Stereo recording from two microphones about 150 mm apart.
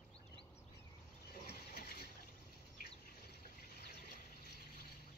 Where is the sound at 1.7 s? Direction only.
90° left.